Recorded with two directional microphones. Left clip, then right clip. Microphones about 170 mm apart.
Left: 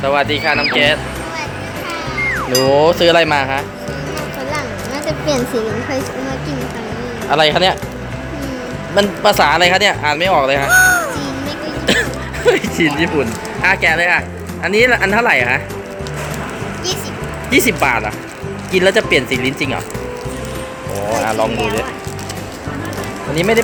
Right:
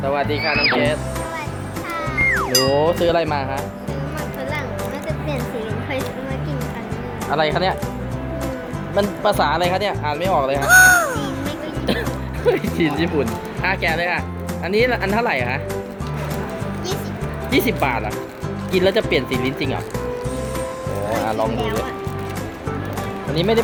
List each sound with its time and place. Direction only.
0.0 s speech: 5° right (ahead or behind)
2.3 s speech: centre (ahead or behind)
7.3 s speech: 5° left (ahead or behind)
9.0 s speech: 5° left (ahead or behind)
11.9 s music: centre (ahead or behind)
12.5 s speech: centre (ahead or behind)
17.5 s speech: 5° right (ahead or behind)
21.1 s speech: centre (ahead or behind)
23.3 s speech: 5° right (ahead or behind)